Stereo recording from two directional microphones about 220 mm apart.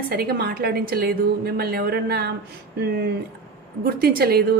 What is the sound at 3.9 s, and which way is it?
Speech, 45° right (ahead or behind).